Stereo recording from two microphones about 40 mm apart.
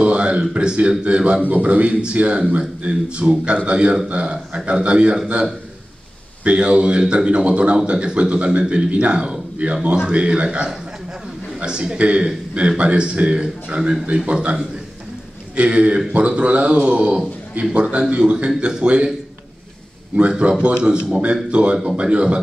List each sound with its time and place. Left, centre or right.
0.0 s a man's voice: right
6.4 s a man's voice: right
20.2 s a man's voice: right